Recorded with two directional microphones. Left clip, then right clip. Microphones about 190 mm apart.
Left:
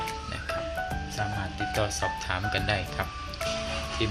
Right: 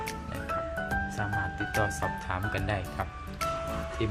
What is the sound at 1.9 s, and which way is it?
Speech, 10° right (ahead or behind).